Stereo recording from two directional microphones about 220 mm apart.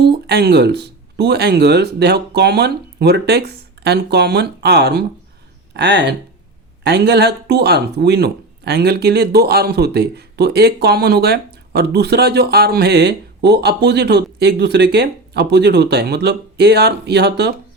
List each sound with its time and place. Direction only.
0.0 s speech: 45° right (ahead or behind)